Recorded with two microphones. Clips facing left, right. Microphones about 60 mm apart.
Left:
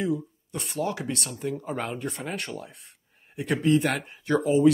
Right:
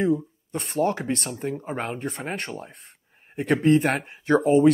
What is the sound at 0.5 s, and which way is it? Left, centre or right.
Speech, right.